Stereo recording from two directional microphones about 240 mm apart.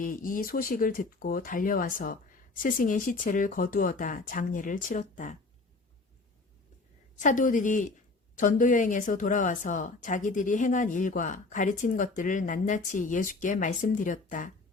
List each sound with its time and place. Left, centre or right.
0.0 s a woman's voice: left
7.2 s a woman's voice: left